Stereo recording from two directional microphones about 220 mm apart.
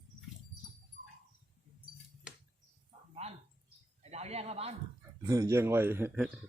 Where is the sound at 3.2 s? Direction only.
30° right (ahead or behind).